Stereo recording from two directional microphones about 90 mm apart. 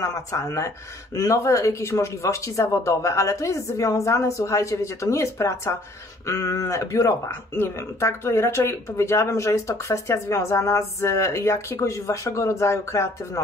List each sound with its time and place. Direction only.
0.0 s speech: 40° left (ahead or behind)